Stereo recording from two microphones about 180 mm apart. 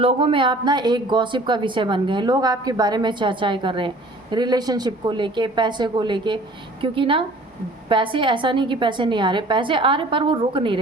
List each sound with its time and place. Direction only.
0.0 s speech: 30° right (ahead or behind)